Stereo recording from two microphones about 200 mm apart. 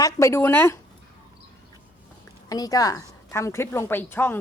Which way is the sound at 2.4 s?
20° left (ahead or behind).